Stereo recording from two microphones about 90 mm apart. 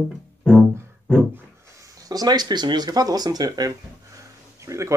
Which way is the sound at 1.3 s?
35° right (ahead or behind).